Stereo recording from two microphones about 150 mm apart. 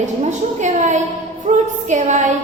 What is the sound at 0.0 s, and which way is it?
A woman's voice, 55° right (ahead or behind).